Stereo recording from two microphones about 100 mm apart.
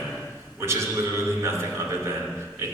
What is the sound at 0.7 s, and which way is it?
A man's voice, 25° right (ahead or behind).